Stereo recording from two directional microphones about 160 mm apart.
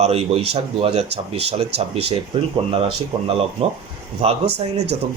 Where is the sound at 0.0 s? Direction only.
40° right (ahead or behind).